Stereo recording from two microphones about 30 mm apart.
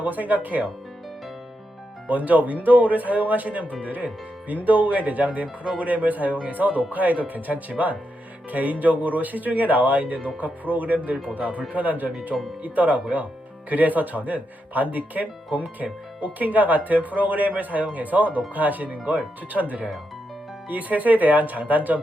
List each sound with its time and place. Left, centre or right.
0.0 s speech: right
2.0 s speech: right
11.3 s speech: right
11.7 s speech: right
13.7 s speech: right
20.7 s speech: right